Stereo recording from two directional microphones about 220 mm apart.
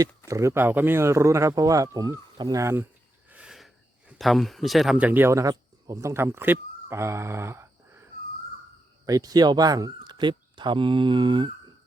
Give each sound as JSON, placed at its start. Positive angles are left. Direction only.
{"t": 0.3, "sound": "speech", "side_deg": -15}
{"t": 3.2, "sound": "cricket", "side_deg": -5}
{"t": 4.2, "sound": "speech", "side_deg": 0}
{"t": 9.0, "sound": "speech", "side_deg": -15}